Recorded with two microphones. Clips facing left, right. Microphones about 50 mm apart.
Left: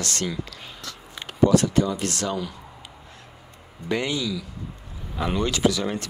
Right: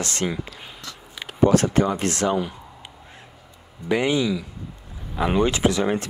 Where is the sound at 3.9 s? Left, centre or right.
Centre.